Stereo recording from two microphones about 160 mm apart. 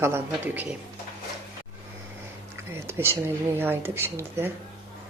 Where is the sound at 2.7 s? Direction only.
15° right (ahead or behind).